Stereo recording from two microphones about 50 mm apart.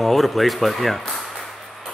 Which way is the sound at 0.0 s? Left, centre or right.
Centre.